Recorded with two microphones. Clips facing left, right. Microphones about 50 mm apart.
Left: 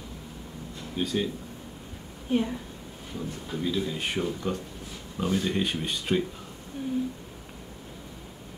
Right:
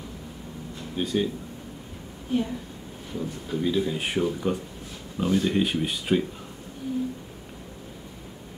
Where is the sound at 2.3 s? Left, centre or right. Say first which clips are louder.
Even; left.